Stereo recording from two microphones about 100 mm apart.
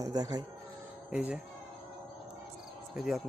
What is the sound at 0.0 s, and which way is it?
Speech, 40° right (ahead or behind).